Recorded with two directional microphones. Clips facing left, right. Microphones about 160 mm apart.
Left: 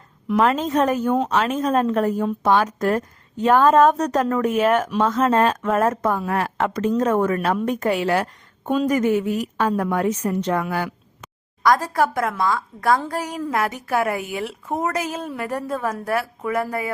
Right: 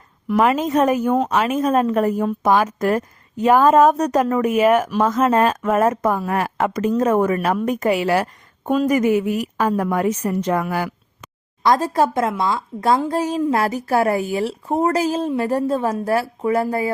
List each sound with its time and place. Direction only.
0.3 s a woman's voice: 5° right (ahead or behind)
11.6 s a woman's voice: 25° right (ahead or behind)